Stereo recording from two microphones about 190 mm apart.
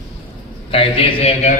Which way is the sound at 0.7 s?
30° left (ahead or behind).